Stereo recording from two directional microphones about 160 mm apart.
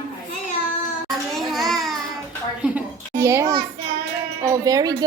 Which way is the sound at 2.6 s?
15° right (ahead or behind).